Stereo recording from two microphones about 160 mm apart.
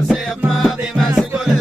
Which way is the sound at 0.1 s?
Centre (ahead or behind).